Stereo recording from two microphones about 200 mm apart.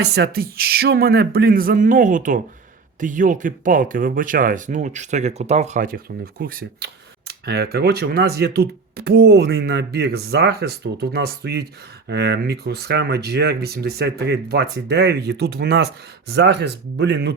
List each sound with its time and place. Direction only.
0.0 s speech: 55° right (ahead or behind)